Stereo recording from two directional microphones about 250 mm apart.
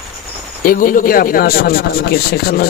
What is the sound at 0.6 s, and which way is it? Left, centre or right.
Speech, left.